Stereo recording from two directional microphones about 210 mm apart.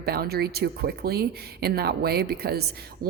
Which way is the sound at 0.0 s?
50° right (ahead or behind).